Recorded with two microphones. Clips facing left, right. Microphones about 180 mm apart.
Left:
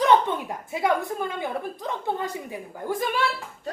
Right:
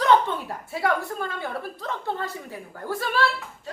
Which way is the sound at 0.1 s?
15° left (ahead or behind).